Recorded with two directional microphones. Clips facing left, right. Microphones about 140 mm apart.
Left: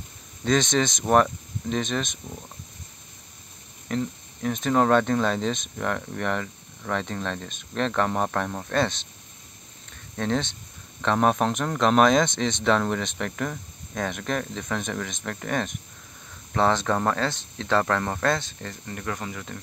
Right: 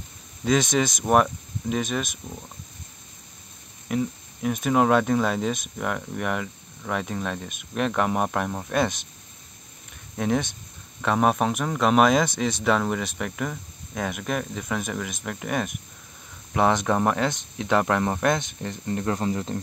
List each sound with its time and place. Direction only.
0.5 s speech: 10° right (ahead or behind)
3.9 s speech: 10° right (ahead or behind)
10.1 s speech: 10° right (ahead or behind); by 19.6 s 30° right (ahead or behind)